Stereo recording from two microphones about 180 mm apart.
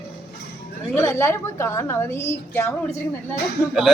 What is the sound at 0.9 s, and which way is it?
A woman's voice, 15° left (ahead or behind).